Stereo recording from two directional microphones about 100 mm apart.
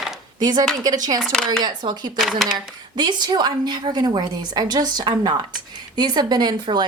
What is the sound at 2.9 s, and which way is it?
A woman's voice, 45° right (ahead or behind).